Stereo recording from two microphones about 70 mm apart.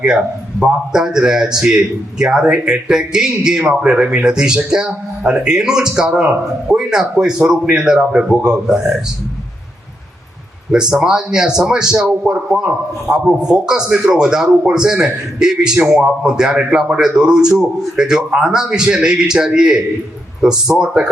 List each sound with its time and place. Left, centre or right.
0.0 s a man's voice: centre
10.7 s a man's voice: centre